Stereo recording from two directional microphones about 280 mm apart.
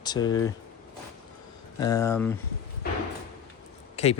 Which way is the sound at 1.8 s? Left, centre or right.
Centre.